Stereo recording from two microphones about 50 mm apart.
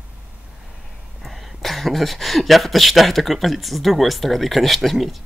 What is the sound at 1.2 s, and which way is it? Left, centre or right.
Speech, centre.